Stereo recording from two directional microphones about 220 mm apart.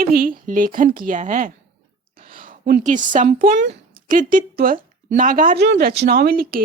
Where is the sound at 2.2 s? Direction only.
40° right (ahead or behind).